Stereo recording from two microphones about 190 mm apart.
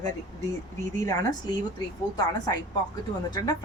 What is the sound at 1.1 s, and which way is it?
Speech, 20° left (ahead or behind).